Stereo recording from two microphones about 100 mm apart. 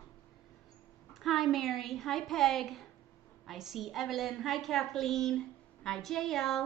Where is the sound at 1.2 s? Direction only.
Centre (ahead or behind).